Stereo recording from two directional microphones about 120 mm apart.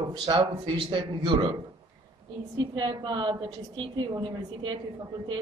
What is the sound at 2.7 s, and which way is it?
Speech, 40° right (ahead or behind).